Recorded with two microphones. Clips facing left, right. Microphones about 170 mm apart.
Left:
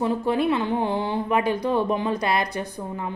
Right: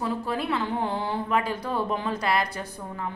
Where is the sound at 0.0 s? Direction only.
20° left (ahead or behind).